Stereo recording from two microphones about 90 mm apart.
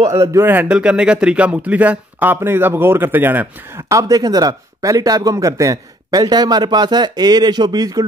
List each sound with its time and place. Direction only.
0.0 s speech: 35° right (ahead or behind)
0.5 s speech: 15° right (ahead or behind)
3.9 s speech: 45° right (ahead or behind)